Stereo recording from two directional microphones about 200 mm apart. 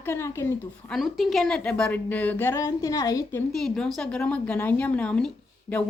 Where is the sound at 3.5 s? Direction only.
Centre (ahead or behind).